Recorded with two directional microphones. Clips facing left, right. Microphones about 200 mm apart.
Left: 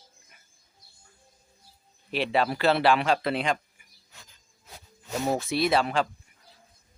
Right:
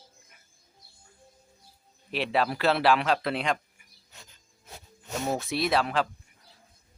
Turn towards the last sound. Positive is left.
turn(degrees=0)  # may be behind; listen again after turning